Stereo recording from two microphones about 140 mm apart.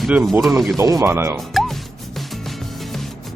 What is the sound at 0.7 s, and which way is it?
Speech, 20° right (ahead or behind).